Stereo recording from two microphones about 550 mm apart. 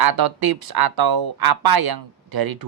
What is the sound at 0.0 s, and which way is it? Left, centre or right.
A man's voice, right.